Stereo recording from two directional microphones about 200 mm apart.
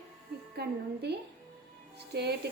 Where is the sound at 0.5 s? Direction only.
55° right (ahead or behind).